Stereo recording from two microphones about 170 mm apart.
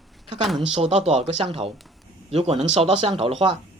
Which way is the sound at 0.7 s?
35° right (ahead or behind).